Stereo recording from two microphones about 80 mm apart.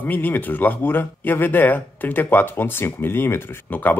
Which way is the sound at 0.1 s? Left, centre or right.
Left.